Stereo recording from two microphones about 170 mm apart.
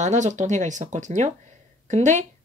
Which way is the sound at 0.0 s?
45° right (ahead or behind).